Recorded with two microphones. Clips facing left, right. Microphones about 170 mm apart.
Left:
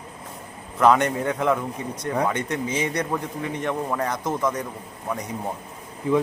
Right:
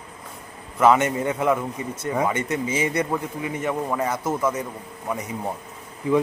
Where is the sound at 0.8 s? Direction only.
5° right (ahead or behind).